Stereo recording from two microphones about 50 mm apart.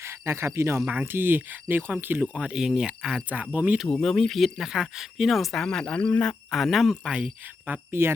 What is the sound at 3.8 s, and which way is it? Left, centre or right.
Speech, centre.